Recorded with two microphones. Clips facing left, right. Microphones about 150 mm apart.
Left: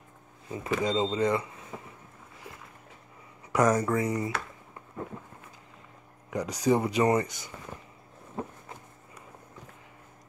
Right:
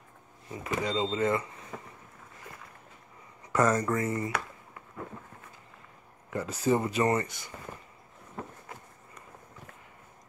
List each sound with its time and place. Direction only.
0.5 s speech: 20° left (ahead or behind)
3.5 s speech: 10° left (ahead or behind)
6.3 s speech: 15° left (ahead or behind)
8.4 s a sound: 20° left (ahead or behind)